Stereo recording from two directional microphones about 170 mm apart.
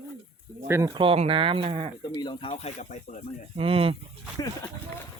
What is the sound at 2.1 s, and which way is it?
Speech, 25° left (ahead or behind).